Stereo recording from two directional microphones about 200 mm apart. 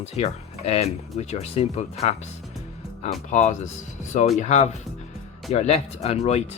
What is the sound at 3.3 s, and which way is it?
Speech, 35° left (ahead or behind).